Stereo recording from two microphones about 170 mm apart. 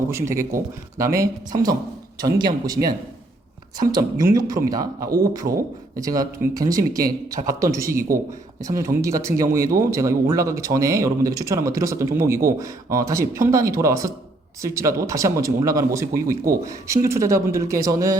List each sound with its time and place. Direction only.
0.1 s speech: 15° right (ahead or behind)